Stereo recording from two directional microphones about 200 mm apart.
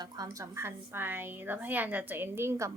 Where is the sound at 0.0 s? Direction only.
15° right (ahead or behind).